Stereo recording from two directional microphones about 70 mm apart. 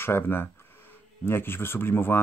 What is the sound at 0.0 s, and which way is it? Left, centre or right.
Speech, left.